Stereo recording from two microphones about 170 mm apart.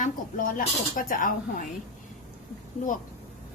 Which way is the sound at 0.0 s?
55° left (ahead or behind).